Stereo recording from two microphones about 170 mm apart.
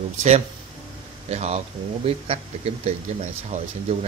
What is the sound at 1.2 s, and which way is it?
Speech, 40° right (ahead or behind).